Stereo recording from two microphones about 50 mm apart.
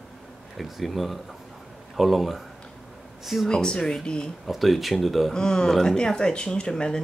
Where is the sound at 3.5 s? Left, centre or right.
Centre.